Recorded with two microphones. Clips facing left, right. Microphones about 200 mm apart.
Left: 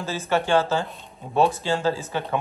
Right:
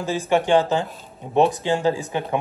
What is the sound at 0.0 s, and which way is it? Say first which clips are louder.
Speech: right 4 dB; 15° right (ahead or behind).